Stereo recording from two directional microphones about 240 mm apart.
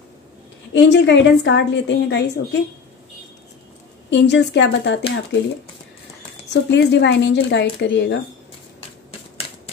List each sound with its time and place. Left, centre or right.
0.7 s a woman's voice: left
4.1 s a woman's voice: left
6.5 s a woman's voice: left